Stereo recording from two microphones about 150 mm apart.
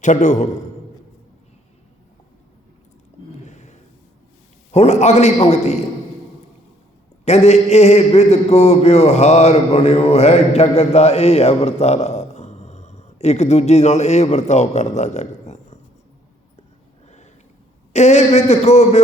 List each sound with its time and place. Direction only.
0.0 s a man's voice: 55° left (ahead or behind)
3.4 s a sound: 50° left (ahead or behind)
4.7 s a man's voice: 45° left (ahead or behind)
7.3 s a man's voice: 45° left (ahead or behind)
17.9 s a man's voice: 50° left (ahead or behind)